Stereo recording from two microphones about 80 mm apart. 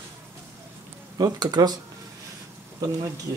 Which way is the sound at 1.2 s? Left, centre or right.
Right.